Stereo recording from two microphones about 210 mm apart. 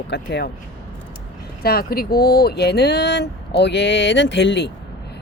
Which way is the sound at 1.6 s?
45° left (ahead or behind).